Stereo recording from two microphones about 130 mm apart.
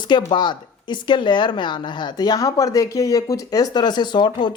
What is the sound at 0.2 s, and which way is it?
A woman's voice, 40° left (ahead or behind).